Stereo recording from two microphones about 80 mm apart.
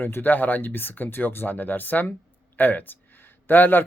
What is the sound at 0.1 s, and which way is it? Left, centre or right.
Speech, left.